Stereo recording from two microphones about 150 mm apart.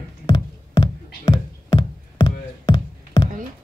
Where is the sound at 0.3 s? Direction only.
25° left (ahead or behind).